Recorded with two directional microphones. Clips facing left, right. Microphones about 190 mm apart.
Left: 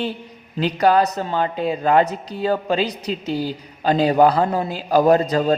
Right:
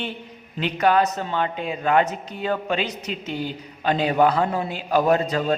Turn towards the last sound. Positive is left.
turn(degrees=40)  # may be behind; listen again after turning